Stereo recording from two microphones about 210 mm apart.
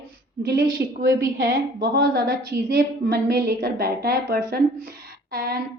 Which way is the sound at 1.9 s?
50° right (ahead or behind).